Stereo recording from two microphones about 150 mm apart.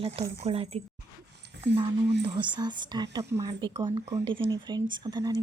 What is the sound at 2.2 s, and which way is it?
Speech, 30° right (ahead or behind).